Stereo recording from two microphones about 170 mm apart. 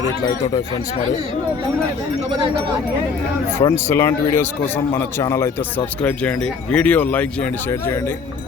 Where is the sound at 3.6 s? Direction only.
15° left (ahead or behind).